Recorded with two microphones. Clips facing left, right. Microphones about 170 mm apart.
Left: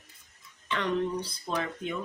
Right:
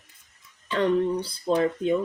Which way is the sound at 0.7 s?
30° right (ahead or behind).